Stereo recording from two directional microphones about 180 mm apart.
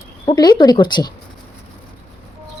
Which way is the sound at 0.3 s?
25° left (ahead or behind).